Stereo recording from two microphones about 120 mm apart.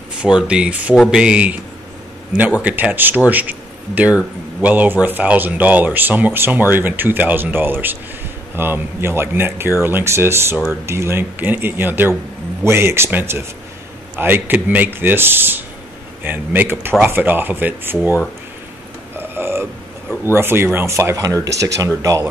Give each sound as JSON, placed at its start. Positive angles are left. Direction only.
{"t": 0.2, "sound": "speech", "side_deg": -10}
{"t": 0.9, "sound": "speech", "side_deg": 5}
{"t": 1.2, "sound": "speech", "side_deg": -10}
{"t": 19.1, "sound": "burping", "side_deg": -20}
{"t": 20.3, "sound": "speech", "side_deg": -20}